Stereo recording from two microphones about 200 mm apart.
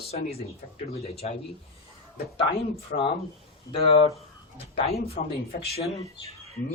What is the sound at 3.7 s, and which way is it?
Speech, 30° left (ahead or behind).